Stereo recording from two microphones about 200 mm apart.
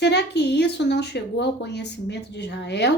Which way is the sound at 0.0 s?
60° left (ahead or behind).